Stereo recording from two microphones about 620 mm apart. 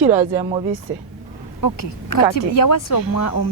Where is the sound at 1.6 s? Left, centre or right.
Left.